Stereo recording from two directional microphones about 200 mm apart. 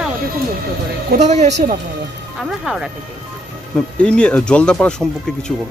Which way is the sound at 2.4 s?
Centre (ahead or behind).